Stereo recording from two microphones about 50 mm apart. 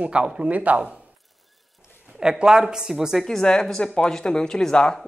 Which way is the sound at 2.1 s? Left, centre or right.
Centre.